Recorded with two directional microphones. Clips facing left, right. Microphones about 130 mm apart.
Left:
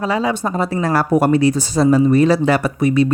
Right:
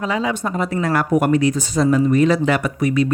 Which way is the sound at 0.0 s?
35° left (ahead or behind).